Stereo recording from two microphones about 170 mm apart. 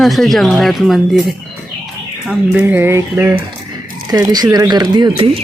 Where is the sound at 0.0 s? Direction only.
Centre (ahead or behind).